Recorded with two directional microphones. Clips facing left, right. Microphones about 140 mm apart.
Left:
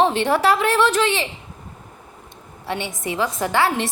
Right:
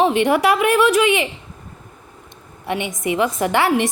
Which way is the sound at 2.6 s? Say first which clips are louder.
Right 4 dB; 15° right (ahead or behind).